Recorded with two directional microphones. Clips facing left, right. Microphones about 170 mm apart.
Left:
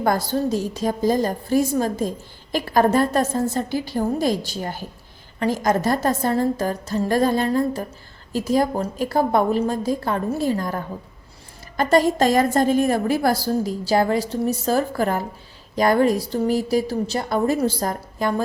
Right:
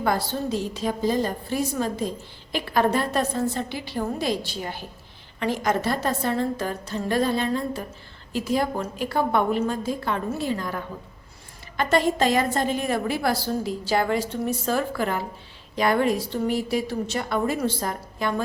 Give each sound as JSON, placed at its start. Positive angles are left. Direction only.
{"t": 0.0, "sound": "a woman's voice", "side_deg": 45}